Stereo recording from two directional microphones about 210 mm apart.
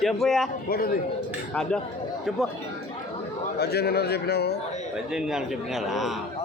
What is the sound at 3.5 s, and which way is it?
A man's voice, 50° left (ahead or behind).